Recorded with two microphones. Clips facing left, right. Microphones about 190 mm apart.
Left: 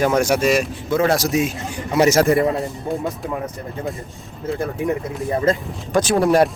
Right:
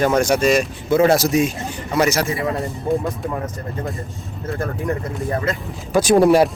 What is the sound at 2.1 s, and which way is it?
Speech, 50° left (ahead or behind).